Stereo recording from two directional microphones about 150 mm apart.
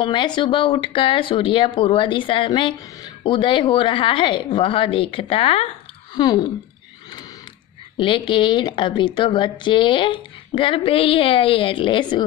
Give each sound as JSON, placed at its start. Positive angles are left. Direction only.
{"t": 0.0, "sound": "a woman's voice", "side_deg": 30}
{"t": 6.1, "sound": "a sound", "side_deg": 25}
{"t": 8.0, "sound": "a woman's voice", "side_deg": 35}